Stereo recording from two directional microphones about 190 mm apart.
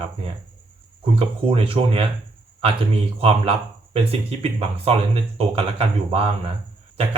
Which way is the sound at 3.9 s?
30° right (ahead or behind).